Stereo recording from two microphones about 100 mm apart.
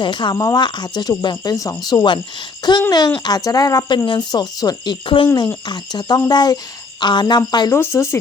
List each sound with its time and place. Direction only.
0.0 s speech: 50° left (ahead or behind)
0.3 s speech: 35° left (ahead or behind)
5.0 s speech: 55° left (ahead or behind)
7.7 s speech: 30° left (ahead or behind)